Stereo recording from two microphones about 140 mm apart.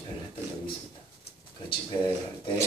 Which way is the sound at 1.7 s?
35° left (ahead or behind).